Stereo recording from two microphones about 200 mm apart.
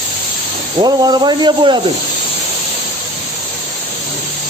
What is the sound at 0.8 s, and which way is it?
Speech, 20° right (ahead or behind).